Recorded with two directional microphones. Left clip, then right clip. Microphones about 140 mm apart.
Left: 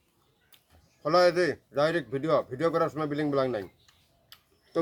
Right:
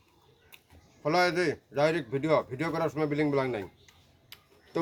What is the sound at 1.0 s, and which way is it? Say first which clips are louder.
A man's voice: left 3 dB; 20° left (ahead or behind).